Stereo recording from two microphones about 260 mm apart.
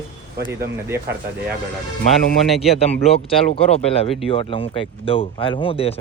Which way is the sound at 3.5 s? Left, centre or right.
Left.